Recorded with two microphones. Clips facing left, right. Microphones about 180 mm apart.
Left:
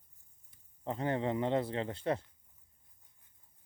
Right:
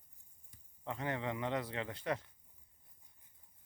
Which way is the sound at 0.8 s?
35° left (ahead or behind).